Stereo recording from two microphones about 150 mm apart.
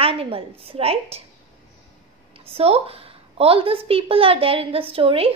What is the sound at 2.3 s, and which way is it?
A woman's voice, 40° right (ahead or behind).